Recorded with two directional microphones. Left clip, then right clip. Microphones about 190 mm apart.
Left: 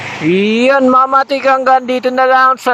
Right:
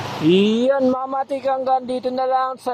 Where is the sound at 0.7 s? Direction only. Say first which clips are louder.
Left 10 dB; 25° left (ahead or behind).